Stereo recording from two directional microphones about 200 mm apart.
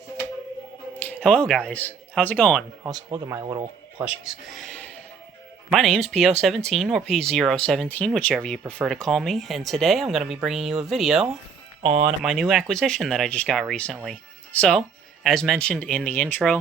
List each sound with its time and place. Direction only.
0.9 s speech: 5° left (ahead or behind)
3.1 s speech: 15° right (ahead or behind)
4.0 s speech: 5° right (ahead or behind)
11.8 s speech: 30° right (ahead or behind)
12.2 s speech: centre (ahead or behind)